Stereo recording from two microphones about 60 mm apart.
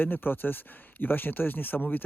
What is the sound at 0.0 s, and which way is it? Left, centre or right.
Speech, left.